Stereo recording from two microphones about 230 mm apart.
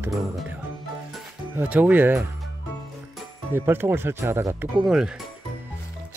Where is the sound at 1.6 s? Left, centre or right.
Centre.